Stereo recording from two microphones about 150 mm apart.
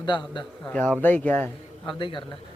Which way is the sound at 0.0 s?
30° left (ahead or behind).